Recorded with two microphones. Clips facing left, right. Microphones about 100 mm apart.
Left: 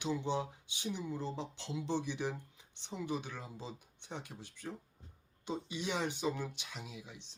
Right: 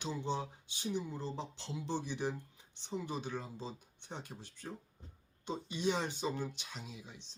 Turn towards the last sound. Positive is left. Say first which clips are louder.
# even
turn(degrees=10)  # may be behind; listen again after turning